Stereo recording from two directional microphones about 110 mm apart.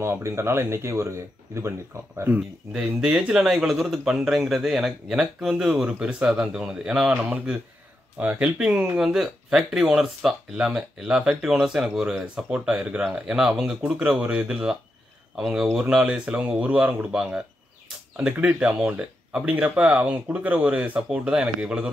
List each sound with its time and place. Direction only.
0.0 s speech: 25° right (ahead or behind)